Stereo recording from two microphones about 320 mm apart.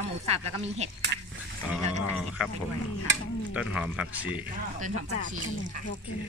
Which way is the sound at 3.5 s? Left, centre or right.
Centre.